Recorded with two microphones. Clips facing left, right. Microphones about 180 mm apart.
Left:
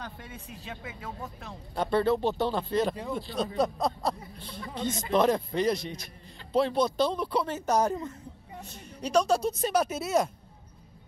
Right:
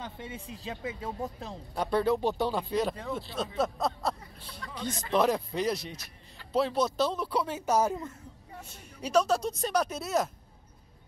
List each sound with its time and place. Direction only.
0.0 s speech: 25° right (ahead or behind)
1.8 s speech: 10° right (ahead or behind)
9.0 s speech: 5° right (ahead or behind)